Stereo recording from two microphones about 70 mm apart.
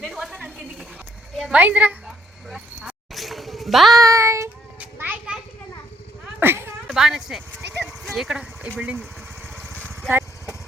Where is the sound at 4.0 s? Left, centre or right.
Right.